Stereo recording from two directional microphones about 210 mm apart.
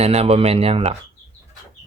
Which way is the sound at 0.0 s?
30° right (ahead or behind).